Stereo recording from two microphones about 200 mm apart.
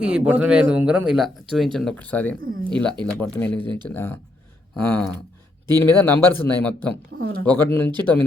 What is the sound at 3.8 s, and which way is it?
Speech, 10° left (ahead or behind).